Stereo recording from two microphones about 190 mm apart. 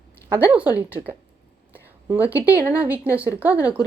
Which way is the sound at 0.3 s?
10° right (ahead or behind).